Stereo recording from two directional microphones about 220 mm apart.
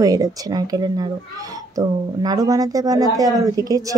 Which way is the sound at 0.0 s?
15° right (ahead or behind).